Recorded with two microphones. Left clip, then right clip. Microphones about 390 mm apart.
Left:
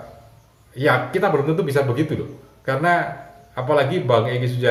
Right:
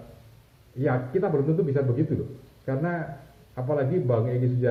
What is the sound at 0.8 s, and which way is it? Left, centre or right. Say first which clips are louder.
Speech: left 8 dB; centre.